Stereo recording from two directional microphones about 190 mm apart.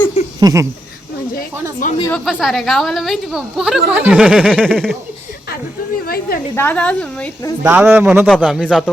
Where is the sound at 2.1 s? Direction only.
Centre (ahead or behind).